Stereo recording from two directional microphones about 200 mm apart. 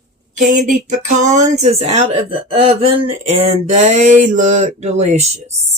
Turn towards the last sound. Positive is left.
turn(degrees=-35)  # may be behind; listen again after turning